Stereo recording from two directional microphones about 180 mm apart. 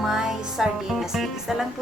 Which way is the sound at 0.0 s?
Centre (ahead or behind).